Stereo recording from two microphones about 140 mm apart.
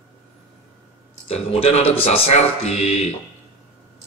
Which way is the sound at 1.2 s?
45° left (ahead or behind).